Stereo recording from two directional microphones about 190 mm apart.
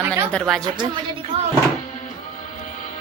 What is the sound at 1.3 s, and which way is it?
Speech, 30° right (ahead or behind).